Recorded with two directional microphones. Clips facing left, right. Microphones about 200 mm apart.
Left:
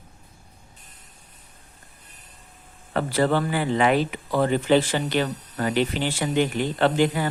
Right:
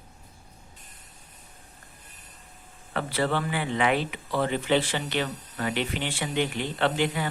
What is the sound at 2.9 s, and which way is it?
Speech, 40° left (ahead or behind).